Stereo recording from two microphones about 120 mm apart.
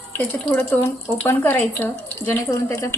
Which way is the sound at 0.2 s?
15° left (ahead or behind).